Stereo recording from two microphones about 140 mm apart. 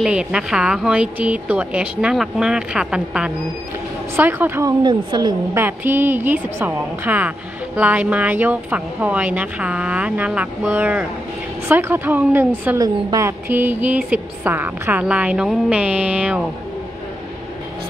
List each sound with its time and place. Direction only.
0.0 s a woman's voice: 5° right (ahead or behind)
4.8 s a woman's voice: 30° right (ahead or behind)
5.5 s a woman's voice: 15° right (ahead or behind)
12.7 s a woman's voice: 25° right (ahead or behind)
13.5 s a woman's voice: 15° right (ahead or behind)